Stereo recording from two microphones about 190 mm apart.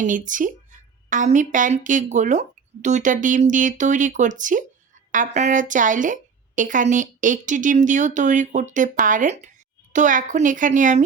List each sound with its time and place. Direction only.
0.0 s a woman's voice: 45° right (ahead or behind)